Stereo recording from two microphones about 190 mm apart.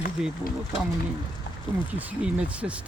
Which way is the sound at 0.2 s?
5° right (ahead or behind).